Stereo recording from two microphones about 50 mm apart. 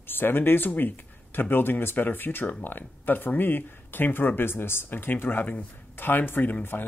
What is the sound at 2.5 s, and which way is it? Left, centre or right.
Speech, left.